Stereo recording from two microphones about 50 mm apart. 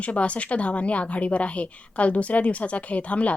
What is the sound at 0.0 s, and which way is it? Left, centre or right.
A woman's voice, left.